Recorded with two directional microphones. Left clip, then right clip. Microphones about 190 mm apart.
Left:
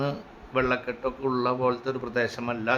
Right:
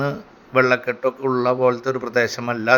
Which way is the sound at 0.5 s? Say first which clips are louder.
Right 9 dB; 20° right (ahead or behind).